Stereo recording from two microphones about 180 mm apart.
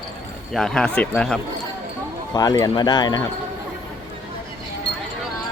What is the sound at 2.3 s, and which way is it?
Speech, 20° left (ahead or behind).